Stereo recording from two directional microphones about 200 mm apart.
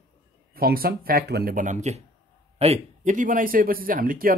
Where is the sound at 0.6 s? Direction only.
50° right (ahead or behind).